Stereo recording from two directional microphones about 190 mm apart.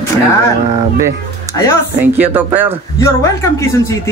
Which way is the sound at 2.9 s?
15° left (ahead or behind).